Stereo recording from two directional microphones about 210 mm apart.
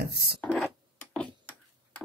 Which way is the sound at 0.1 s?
50° right (ahead or behind).